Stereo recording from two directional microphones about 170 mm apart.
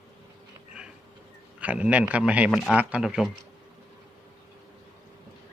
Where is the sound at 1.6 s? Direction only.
10° right (ahead or behind).